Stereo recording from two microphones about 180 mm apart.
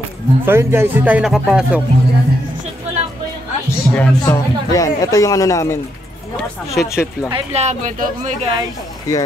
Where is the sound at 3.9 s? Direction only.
10° left (ahead or behind).